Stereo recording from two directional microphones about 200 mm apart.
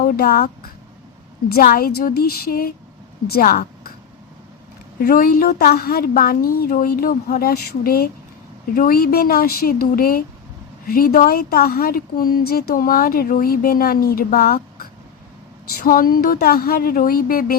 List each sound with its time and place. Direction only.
0.0 s speech: 50° left (ahead or behind)
5.0 s speech: 45° left (ahead or behind)
15.8 s speech: 45° left (ahead or behind)